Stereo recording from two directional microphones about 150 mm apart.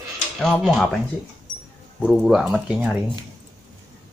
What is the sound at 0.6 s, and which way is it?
Speech, centre (ahead or behind).